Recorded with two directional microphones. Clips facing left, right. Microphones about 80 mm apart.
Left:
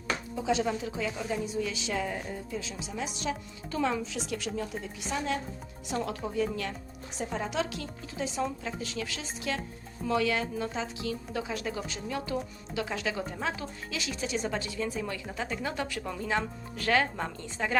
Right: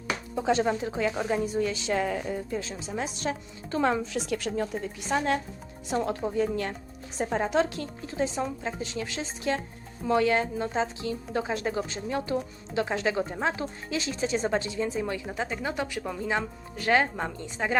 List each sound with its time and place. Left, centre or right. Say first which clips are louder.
0.3 s speech: right 4 dB; right
2.0 s a woman's voice: right 5 dB; right
2.6 s speech: right 4 dB; right
5.9 s speech: right 4 dB; right; by 17.7 s centre